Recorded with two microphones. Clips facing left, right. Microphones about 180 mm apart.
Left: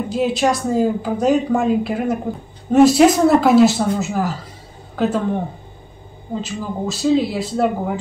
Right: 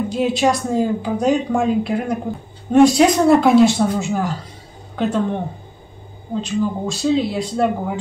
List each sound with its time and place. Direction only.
0.1 s a woman's voice: centre (ahead or behind)
6.4 s a woman's voice: 5° left (ahead or behind)